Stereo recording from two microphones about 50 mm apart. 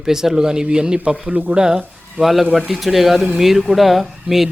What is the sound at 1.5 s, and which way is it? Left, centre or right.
Speech, centre.